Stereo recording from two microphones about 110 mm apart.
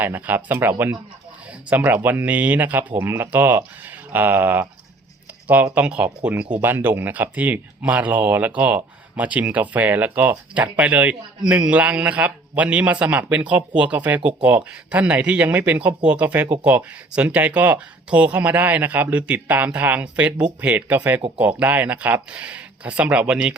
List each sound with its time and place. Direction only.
0.0 s speech: 15° right (ahead or behind)
1.7 s speech: 15° right (ahead or behind)